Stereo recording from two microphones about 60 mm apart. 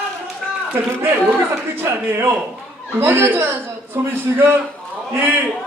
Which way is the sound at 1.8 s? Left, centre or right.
Right.